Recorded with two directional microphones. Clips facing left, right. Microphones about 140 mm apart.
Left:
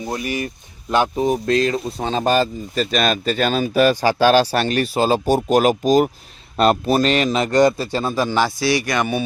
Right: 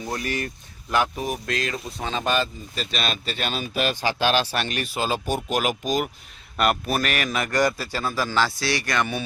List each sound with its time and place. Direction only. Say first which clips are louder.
0.1 s speech: left 4 dB; 15° left (ahead or behind)
0.9 s a man's voice: left 6 dB; 25° left (ahead or behind)